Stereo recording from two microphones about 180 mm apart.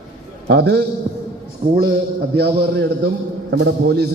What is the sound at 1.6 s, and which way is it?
Speech, 45° right (ahead or behind).